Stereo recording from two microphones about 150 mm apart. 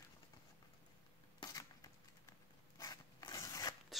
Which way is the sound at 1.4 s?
25° left (ahead or behind).